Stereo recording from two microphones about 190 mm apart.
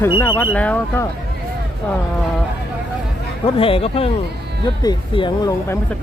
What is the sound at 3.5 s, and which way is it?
Speech, 30° left (ahead or behind).